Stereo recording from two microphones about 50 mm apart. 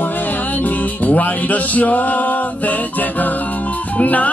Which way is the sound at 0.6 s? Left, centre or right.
Left.